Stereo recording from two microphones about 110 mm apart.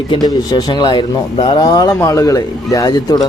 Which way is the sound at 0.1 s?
40° left (ahead or behind).